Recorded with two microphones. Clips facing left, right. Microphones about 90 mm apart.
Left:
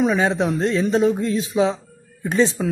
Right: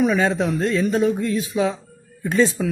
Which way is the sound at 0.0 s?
20° left (ahead or behind).